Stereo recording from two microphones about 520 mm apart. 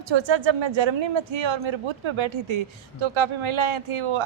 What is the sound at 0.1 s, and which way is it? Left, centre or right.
A woman's voice, right.